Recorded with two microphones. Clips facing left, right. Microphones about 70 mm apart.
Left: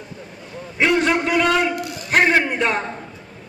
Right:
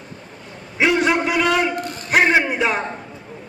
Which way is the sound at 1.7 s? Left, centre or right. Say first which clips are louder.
Even; right.